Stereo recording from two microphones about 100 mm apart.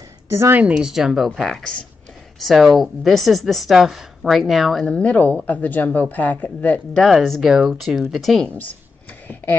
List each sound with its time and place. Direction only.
0.3 s speech: 25° right (ahead or behind)
0.6 s a woman's voice: 10° right (ahead or behind)
4.8 s a woman's voice: 15° left (ahead or behind)
7.0 s a woman's voice: centre (ahead or behind)